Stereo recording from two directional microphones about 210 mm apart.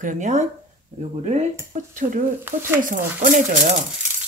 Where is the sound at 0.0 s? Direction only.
35° right (ahead or behind).